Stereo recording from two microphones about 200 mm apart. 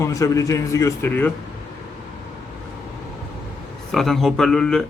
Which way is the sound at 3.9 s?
Centre (ahead or behind).